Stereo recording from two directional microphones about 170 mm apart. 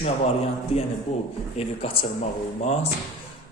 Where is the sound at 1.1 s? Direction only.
40° left (ahead or behind).